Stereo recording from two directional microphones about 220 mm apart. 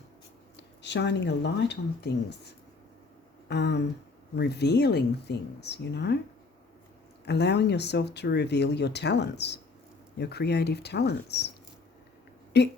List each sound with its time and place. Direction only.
0.5 s speech: 50° left (ahead or behind)
3.5 s speech: 50° left (ahead or behind)
7.3 s speech: 50° left (ahead or behind)
12.5 s speech: 50° left (ahead or behind)